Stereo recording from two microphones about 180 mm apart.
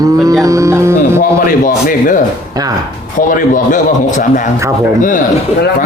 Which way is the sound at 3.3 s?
45° left (ahead or behind).